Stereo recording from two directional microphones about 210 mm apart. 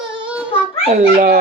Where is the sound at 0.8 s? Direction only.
35° right (ahead or behind).